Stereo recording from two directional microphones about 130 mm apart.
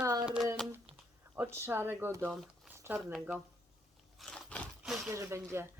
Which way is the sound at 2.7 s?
15° right (ahead or behind).